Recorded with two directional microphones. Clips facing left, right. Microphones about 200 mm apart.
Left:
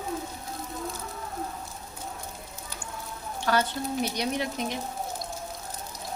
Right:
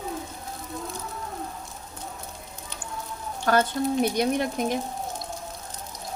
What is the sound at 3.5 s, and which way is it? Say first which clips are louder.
A woman's voice: right 4 dB; 50° right (ahead or behind).